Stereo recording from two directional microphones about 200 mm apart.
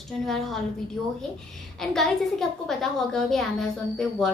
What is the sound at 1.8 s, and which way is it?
A woman's voice, centre (ahead or behind).